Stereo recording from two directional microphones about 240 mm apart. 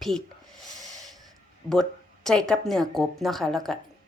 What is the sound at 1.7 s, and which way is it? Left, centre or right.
A woman's voice, centre.